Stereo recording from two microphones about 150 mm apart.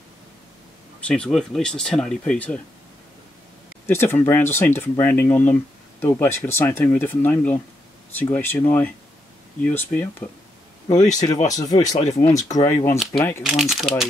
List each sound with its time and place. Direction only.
1.0 s speech: 5° left (ahead or behind)
3.8 s speech: 15° left (ahead or behind)
10.9 s speech: 25° left (ahead or behind)
13.4 s speech: centre (ahead or behind)